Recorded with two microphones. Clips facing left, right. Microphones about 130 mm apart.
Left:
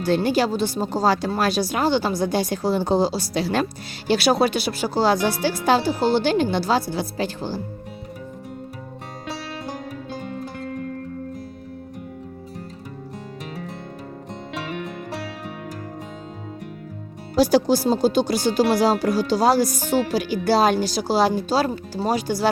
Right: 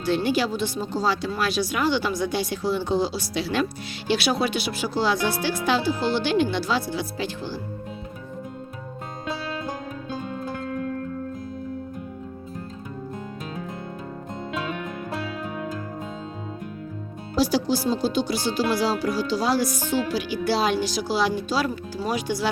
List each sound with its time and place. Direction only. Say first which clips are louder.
0.0 s speech: left 3 dB; 40° left (ahead or behind)
17.3 s speech: left 5 dB; 50° left (ahead or behind)